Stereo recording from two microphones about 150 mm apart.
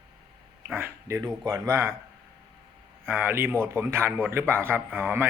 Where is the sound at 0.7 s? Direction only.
15° right (ahead or behind).